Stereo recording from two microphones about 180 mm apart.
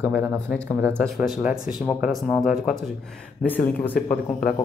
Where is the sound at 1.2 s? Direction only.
5° right (ahead or behind).